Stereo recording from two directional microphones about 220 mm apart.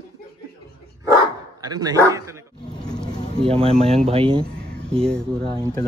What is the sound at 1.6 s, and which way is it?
Speech, 15° right (ahead or behind).